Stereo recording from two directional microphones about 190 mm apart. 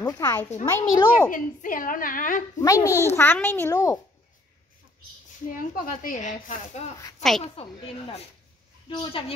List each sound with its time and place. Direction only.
0.0 s a child's voice: 15° left (ahead or behind)
1.3 s speech: 45° left (ahead or behind)
2.6 s a child's voice: 15° left (ahead or behind)
5.5 s speech: 45° left (ahead or behind)
7.6 s speech: 30° left (ahead or behind)
8.8 s a woman's voice: 25° left (ahead or behind)